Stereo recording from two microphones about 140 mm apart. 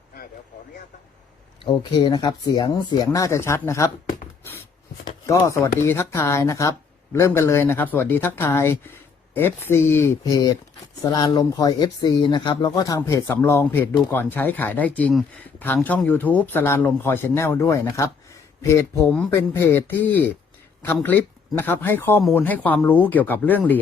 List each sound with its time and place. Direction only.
1.6 s speech: 30° left (ahead or behind)
5.5 s speech: 20° left (ahead or behind)